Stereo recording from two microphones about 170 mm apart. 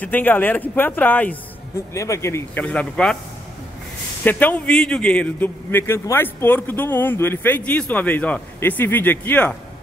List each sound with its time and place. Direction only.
0.0 s a man's voice: 10° left (ahead or behind)
4.2 s a man's voice: 10° left (ahead or behind)